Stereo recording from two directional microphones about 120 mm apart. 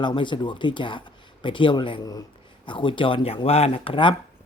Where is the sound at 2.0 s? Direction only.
30° left (ahead or behind).